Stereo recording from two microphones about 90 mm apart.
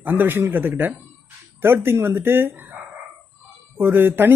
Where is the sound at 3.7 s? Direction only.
25° right (ahead or behind).